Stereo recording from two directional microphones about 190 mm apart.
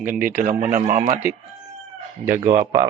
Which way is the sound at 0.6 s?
45° right (ahead or behind).